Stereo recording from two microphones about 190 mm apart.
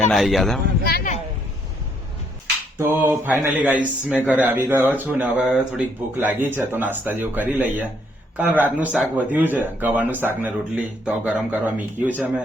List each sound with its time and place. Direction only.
0.0 s speech: centre (ahead or behind)
0.9 s speech: 55° left (ahead or behind)
2.7 s speech: 10° right (ahead or behind)